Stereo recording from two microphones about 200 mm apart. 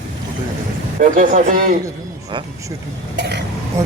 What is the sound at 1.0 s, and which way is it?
Speech, 40° right (ahead or behind).